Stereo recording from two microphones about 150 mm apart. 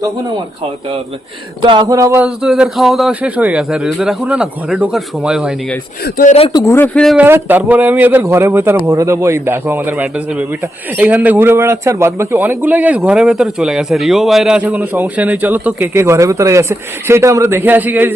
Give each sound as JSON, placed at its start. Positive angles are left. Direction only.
{"t": 1.6, "sound": "a sound", "side_deg": -35}
{"t": 1.9, "sound": "a man's voice", "side_deg": -20}
{"t": 2.4, "sound": "a man's voice", "side_deg": -5}
{"t": 6.5, "sound": "a man's voice", "side_deg": 25}
{"t": 6.7, "sound": "speech", "side_deg": 10}
{"t": 7.2, "sound": "a man's voice", "side_deg": -15}